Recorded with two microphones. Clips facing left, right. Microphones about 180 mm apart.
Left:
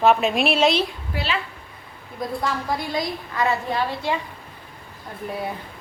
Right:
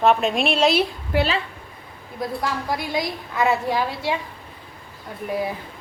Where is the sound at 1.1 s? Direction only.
70° right (ahead or behind).